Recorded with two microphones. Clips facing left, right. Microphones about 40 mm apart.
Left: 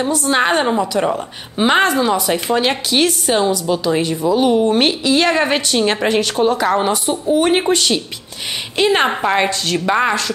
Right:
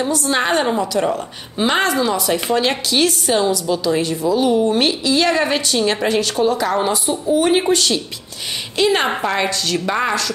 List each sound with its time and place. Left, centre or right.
0.0 s speech: centre